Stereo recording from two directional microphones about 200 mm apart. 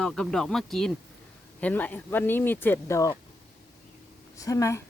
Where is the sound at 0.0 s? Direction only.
5° left (ahead or behind).